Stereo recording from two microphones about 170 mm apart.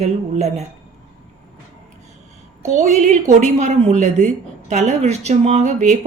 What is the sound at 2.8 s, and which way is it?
A woman's voice, 45° right (ahead or behind).